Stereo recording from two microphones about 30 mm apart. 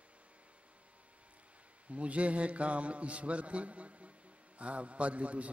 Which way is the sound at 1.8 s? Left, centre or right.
Right.